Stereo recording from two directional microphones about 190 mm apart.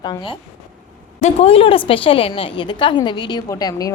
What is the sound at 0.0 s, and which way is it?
A woman's voice, 25° left (ahead or behind).